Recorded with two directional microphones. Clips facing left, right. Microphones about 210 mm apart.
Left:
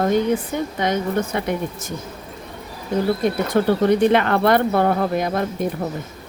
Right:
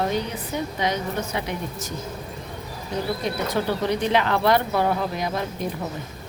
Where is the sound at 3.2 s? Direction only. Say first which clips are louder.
Left 6 dB; 55° left (ahead or behind).